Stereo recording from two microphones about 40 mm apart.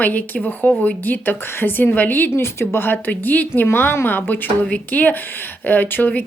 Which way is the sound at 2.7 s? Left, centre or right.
Left.